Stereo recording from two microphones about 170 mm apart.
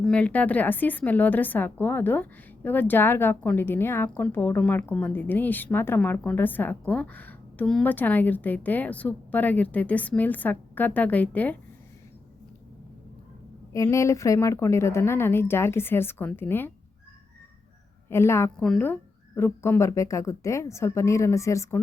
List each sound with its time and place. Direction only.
0.0 s a woman's voice: 5° left (ahead or behind)
13.7 s a woman's voice: 15° left (ahead or behind)
18.1 s a woman's voice: 15° left (ahead or behind)